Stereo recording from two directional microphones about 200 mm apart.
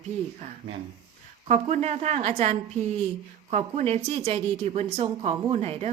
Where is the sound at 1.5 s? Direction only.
35° right (ahead or behind).